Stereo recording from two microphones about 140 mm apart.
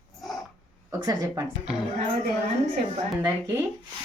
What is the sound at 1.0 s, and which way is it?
Speech, 25° right (ahead or behind).